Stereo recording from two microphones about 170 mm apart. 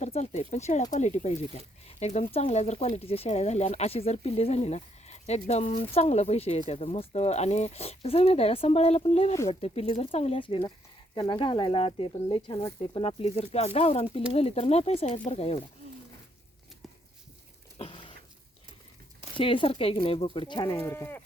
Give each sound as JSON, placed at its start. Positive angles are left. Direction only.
{"t": 0.0, "sound": "speech", "side_deg": 45}
{"t": 17.7, "sound": "a sound", "side_deg": 35}
{"t": 19.4, "sound": "speech", "side_deg": 30}
{"t": 20.8, "sound": "speech", "side_deg": 15}